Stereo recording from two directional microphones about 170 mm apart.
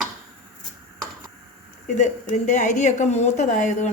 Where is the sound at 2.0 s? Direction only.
45° left (ahead or behind).